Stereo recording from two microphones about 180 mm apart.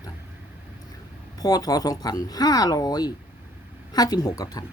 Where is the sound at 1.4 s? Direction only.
20° left (ahead or behind).